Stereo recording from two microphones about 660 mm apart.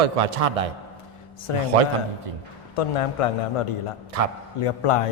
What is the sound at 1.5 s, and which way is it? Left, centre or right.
Speech, left.